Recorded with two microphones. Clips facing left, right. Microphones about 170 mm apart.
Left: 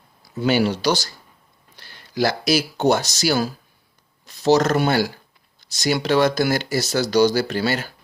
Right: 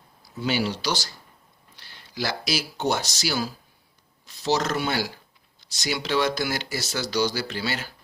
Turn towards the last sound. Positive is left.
turn(degrees=45)  # may be behind; listen again after turning